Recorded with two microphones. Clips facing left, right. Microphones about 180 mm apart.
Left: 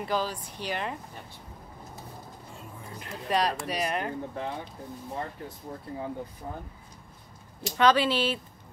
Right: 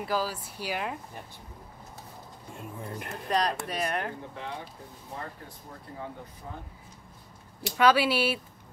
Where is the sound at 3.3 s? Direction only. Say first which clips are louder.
Left 1 dB; centre (ahead or behind).